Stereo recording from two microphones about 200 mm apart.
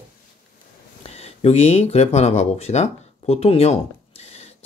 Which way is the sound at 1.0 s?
30° left (ahead or behind).